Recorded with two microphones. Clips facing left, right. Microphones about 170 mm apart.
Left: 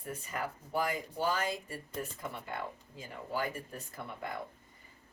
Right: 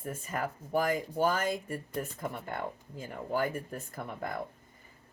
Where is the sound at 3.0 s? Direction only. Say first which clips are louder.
Right 5 dB; 50° right (ahead or behind).